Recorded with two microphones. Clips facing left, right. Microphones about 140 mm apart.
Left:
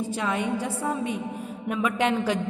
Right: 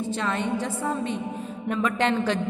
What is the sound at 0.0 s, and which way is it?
A woman's voice, 10° left (ahead or behind).